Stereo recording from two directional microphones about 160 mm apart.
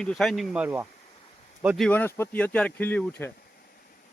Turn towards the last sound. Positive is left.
turn(degrees=10)  # may be behind; listen again after turning